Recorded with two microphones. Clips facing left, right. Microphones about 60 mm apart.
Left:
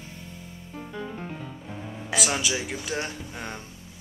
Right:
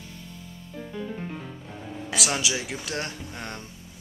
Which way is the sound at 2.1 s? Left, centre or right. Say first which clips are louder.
Left 1 dB; centre.